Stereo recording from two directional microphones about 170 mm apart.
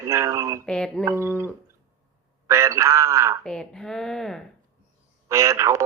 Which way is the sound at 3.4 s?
5° left (ahead or behind).